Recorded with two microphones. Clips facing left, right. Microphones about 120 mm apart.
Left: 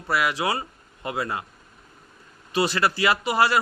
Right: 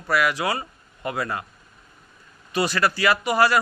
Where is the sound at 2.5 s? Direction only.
25° left (ahead or behind).